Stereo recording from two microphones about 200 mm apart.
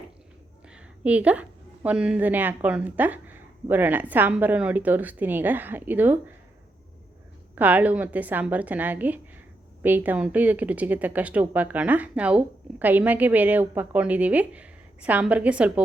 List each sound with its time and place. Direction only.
0.7 s a woman's voice: 5° right (ahead or behind)
7.5 s a woman's voice: 10° right (ahead or behind)